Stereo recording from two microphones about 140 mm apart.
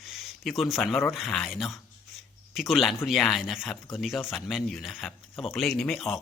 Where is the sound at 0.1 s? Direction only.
Centre (ahead or behind).